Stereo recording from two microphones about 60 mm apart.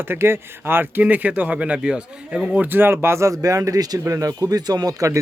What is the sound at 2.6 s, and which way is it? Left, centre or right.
Speech, right.